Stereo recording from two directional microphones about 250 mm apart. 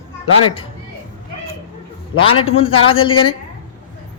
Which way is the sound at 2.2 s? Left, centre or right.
Left.